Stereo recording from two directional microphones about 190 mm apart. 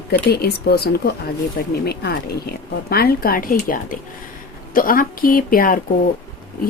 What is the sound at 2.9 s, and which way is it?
Speech, 50° left (ahead or behind).